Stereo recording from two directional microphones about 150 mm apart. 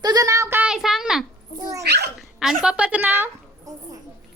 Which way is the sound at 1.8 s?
90° right.